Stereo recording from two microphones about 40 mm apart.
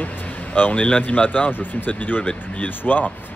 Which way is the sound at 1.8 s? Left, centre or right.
Left.